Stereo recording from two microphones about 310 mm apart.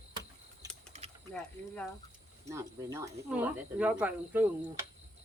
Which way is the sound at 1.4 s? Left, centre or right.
Centre.